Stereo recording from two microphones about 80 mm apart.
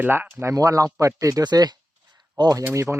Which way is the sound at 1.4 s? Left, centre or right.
Right.